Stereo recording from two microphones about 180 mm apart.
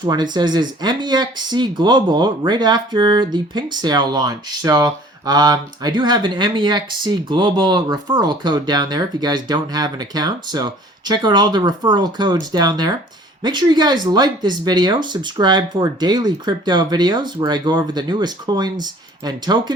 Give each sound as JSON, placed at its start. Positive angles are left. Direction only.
{"t": 0.0, "sound": "speech", "side_deg": -25}